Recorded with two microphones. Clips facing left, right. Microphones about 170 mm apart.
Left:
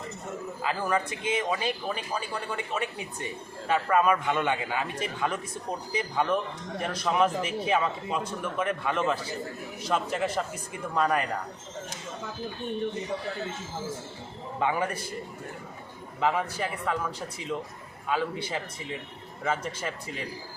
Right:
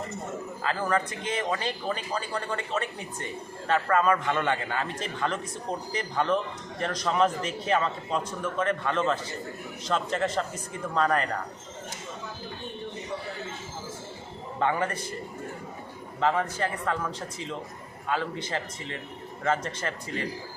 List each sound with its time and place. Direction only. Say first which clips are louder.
0.6 s speech: right 1 dB; 15° left (ahead or behind)
14.6 s speech: right 1 dB; 10° left (ahead or behind)
16.2 s speech: right 1 dB; 10° left (ahead or behind)